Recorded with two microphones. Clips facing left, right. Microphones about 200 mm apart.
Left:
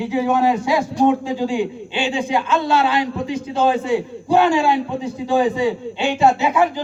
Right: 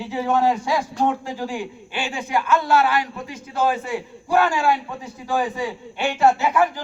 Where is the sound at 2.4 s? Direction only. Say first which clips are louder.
Right 3 dB; 90° left.